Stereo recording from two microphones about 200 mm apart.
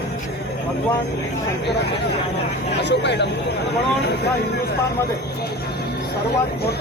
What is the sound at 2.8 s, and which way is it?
Speech, 60° left (ahead or behind).